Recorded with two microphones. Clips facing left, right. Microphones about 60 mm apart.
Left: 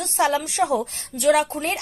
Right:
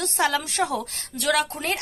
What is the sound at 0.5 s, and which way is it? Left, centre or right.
Speech, centre.